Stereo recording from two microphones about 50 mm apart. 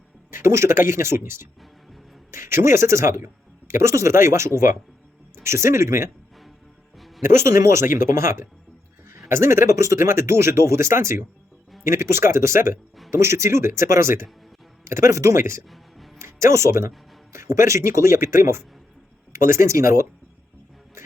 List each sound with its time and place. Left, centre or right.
0.3 s speech: right
7.3 s speech: right